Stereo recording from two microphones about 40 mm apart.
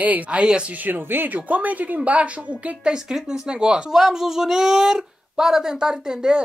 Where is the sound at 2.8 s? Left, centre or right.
Centre.